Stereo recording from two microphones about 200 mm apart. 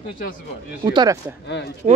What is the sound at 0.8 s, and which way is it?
Speech, 20° right (ahead or behind).